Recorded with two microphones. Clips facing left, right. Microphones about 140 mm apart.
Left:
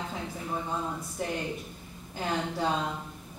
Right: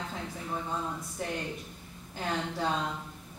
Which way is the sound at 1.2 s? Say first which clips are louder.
Left 3 dB; 5° left (ahead or behind).